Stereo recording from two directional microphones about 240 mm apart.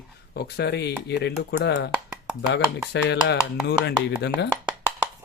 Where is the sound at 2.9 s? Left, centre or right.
Left.